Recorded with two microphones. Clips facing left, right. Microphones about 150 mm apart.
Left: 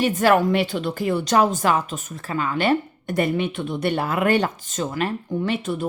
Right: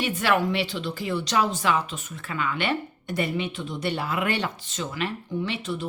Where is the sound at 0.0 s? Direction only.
45° left (ahead or behind).